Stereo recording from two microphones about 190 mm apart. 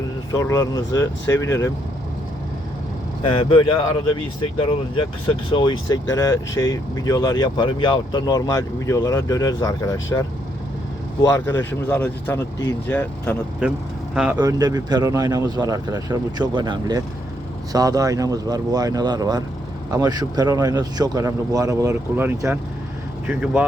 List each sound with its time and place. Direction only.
0.3 s speech: 20° left (ahead or behind)
3.2 s speech: 25° left (ahead or behind)
6.1 s speech: 15° left (ahead or behind)
13.6 s speech: 5° right (ahead or behind)
14.6 s speech: 20° right (ahead or behind)